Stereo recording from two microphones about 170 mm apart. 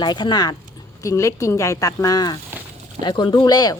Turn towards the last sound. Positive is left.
turn(degrees=25)  # may be behind; listen again after turning